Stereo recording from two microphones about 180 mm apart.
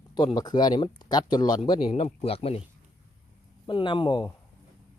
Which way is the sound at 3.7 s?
25° left (ahead or behind).